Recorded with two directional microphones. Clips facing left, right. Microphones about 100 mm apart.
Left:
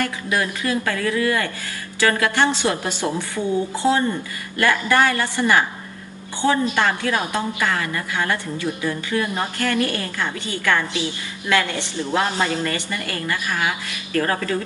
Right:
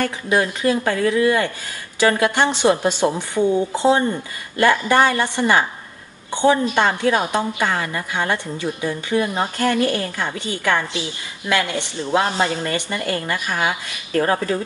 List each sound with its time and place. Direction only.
0.0 s a woman's voice: 25° right (ahead or behind)
12.1 s a woman's voice: 25° right (ahead or behind)